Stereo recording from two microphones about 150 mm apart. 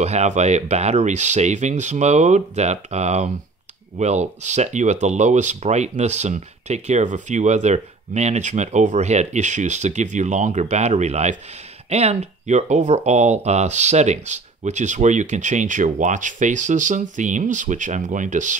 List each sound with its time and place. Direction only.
0.0 s speech: 50° right (ahead or behind)